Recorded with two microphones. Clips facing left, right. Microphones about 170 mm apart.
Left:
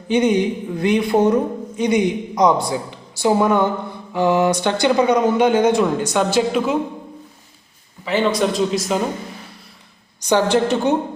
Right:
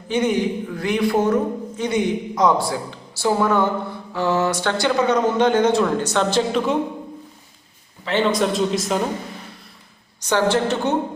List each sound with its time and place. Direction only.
0.1 s speech: 20° left (ahead or behind)
8.0 s speech: centre (ahead or behind)
10.2 s speech: 15° left (ahead or behind)